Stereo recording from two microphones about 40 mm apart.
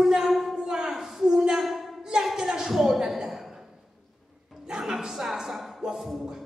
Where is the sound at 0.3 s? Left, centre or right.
Centre.